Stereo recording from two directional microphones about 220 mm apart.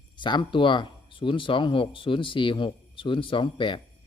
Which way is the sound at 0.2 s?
20° left (ahead or behind).